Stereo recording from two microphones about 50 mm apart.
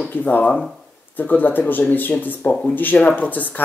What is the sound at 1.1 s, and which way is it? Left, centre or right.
Speech, left.